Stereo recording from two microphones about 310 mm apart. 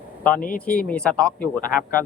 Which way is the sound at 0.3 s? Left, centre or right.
Left.